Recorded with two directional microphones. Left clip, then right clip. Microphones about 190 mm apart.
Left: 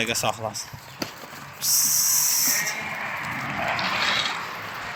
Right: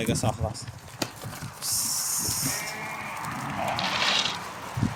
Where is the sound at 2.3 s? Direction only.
10° right (ahead or behind).